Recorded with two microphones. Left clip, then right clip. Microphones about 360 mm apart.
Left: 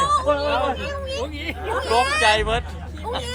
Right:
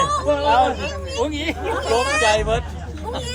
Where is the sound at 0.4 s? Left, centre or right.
Centre.